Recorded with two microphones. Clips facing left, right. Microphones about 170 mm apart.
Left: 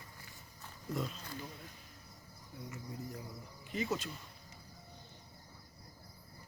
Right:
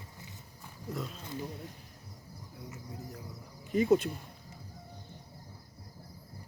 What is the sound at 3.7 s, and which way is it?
Speech, 55° right (ahead or behind).